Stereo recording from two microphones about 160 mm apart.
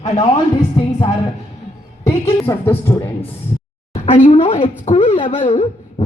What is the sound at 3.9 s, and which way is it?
Speech, 35° left (ahead or behind).